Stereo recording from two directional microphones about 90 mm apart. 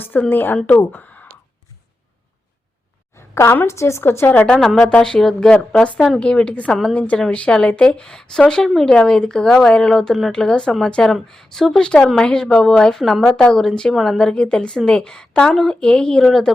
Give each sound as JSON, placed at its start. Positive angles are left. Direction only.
{"t": 0.0, "sound": "a woman's voice", "side_deg": 20}
{"t": 3.2, "sound": "a woman's voice", "side_deg": 30}
{"t": 4.3, "sound": "a woman's voice", "side_deg": 20}
{"t": 4.6, "sound": "a woman's voice", "side_deg": 0}